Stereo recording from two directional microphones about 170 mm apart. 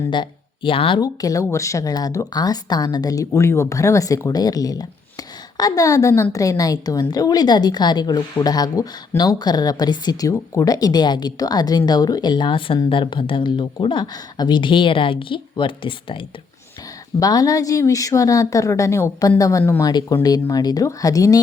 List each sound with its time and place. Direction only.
0.1 s speech: 30° left (ahead or behind)